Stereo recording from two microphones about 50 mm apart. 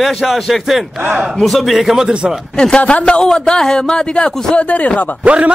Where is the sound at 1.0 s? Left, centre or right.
Right.